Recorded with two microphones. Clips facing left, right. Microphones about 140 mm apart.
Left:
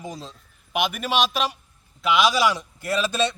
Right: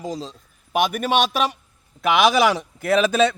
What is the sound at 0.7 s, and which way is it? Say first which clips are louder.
A man's voice: right 4 dB; 45° right (ahead or behind).